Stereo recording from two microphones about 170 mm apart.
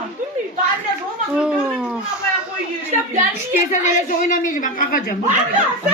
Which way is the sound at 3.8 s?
50° left (ahead or behind).